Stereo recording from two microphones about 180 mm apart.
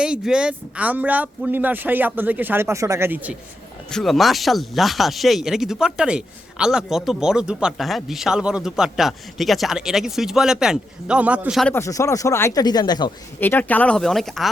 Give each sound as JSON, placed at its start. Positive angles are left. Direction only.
{"t": 0.0, "sound": "speech", "side_deg": -5}
{"t": 3.8, "sound": "speech", "side_deg": 0}
{"t": 11.7, "sound": "speech", "side_deg": 15}
{"t": 13.4, "sound": "speech", "side_deg": 10}